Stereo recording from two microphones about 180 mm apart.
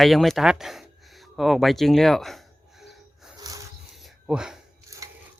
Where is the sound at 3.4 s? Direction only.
20° right (ahead or behind).